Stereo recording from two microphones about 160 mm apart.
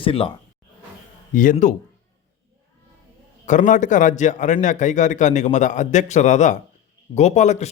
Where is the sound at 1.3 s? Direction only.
55° left (ahead or behind).